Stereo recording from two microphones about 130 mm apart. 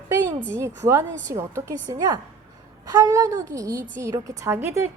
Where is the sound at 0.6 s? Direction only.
20° right (ahead or behind).